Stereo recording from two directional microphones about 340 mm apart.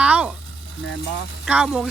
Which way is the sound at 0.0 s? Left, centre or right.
Centre.